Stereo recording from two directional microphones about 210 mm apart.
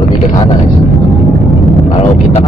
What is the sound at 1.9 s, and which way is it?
Speech, 25° left (ahead or behind).